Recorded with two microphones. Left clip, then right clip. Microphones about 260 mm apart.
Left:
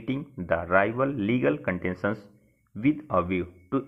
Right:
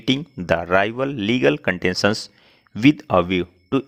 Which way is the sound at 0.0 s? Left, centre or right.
Right.